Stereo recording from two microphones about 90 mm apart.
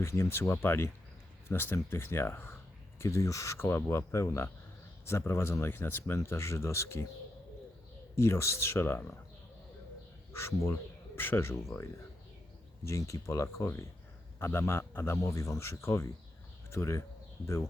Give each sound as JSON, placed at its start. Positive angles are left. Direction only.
{"t": 0.0, "sound": "speech", "side_deg": 30}
{"t": 8.1, "sound": "speech", "side_deg": 30}
{"t": 10.3, "sound": "speech", "side_deg": 30}
{"t": 12.8, "sound": "speech", "side_deg": 35}